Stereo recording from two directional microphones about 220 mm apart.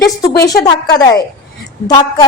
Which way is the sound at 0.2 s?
15° left (ahead or behind).